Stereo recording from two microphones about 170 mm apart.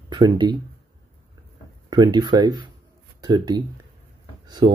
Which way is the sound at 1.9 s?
25° right (ahead or behind).